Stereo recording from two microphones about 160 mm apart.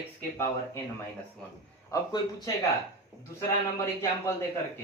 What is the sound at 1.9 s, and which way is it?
Speech, 25° left (ahead or behind).